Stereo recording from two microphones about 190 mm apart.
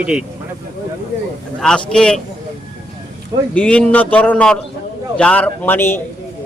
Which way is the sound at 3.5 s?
5° left (ahead or behind).